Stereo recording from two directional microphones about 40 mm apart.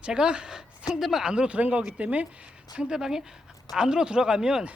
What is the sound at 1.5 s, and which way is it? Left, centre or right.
Speech, right.